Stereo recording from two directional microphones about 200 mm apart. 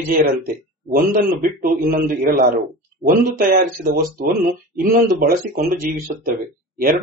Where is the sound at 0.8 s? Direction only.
45° right (ahead or behind).